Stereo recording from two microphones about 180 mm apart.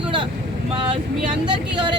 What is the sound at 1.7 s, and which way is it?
Speech, 25° right (ahead or behind).